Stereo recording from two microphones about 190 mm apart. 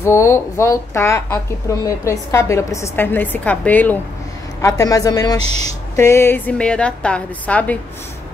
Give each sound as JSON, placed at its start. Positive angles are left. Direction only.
{"t": 0.0, "sound": "a woman's voice", "side_deg": 15}
{"t": 5.4, "sound": "speech", "side_deg": -35}
{"t": 5.9, "sound": "a woman's voice", "side_deg": 15}